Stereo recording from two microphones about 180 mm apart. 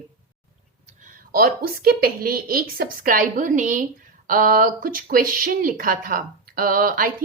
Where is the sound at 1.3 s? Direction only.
55° right (ahead or behind).